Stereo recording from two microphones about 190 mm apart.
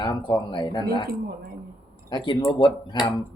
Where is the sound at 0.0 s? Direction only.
25° left (ahead or behind).